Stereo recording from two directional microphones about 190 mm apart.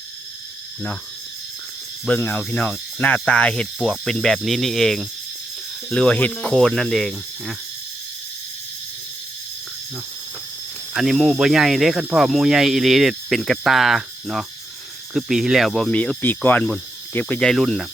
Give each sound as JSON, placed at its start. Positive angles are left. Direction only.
{"t": 2.0, "sound": "speech", "side_deg": 5}
{"t": 10.9, "sound": "speech", "side_deg": 0}